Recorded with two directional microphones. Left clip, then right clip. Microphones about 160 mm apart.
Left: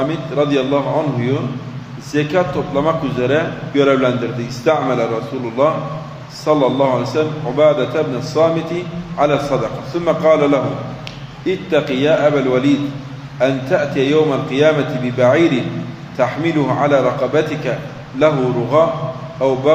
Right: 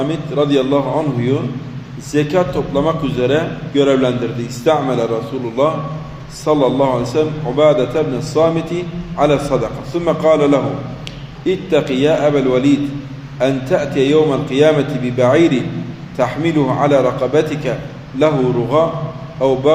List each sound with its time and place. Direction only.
0.1 s a man's voice: 10° right (ahead or behind)
6.4 s a man's voice: 10° right (ahead or behind)